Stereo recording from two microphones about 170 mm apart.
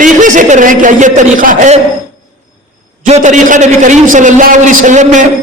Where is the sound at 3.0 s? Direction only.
45° right (ahead or behind).